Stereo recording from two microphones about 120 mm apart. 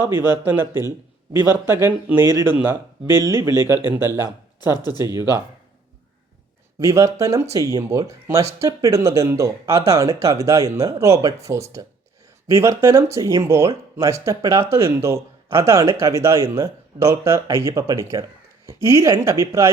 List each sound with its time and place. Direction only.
0.0 s speech: 20° right (ahead or behind)
6.7 s speech: 25° right (ahead or behind)